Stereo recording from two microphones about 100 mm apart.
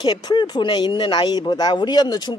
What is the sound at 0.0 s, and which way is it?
Speech, 50° left (ahead or behind).